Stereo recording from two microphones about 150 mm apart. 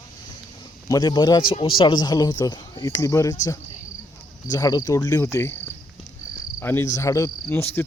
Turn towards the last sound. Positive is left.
turn(degrees=20)  # may be behind; listen again after turning